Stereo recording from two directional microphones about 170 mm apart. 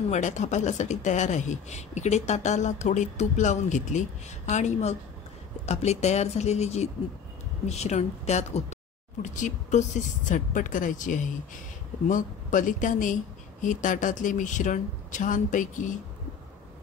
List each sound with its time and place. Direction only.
0.1 s speech: 45° left (ahead or behind)